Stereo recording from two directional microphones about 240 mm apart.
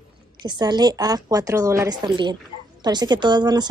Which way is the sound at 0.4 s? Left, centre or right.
Centre.